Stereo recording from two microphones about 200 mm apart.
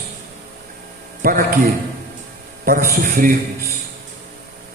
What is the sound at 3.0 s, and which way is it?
Speech, 45° right (ahead or behind).